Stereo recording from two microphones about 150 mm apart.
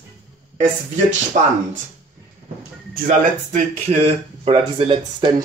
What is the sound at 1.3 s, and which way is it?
Speech, 55° right (ahead or behind).